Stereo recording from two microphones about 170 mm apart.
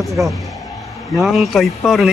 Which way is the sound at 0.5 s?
Centre (ahead or behind).